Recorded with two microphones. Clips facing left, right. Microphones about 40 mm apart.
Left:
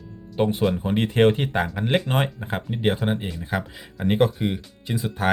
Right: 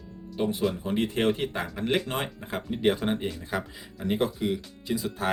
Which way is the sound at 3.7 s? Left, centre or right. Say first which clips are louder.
Left 11 dB; left.